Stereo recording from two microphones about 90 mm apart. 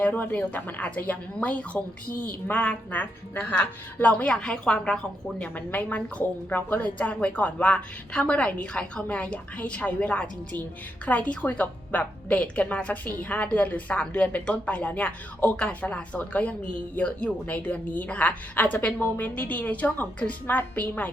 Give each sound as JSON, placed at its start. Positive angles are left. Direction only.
{"t": 0.0, "sound": "a woman's voice", "side_deg": 15}